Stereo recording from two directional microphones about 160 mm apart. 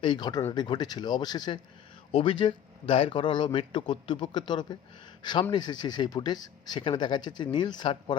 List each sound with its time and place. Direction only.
0.0 s speech: 30° left (ahead or behind)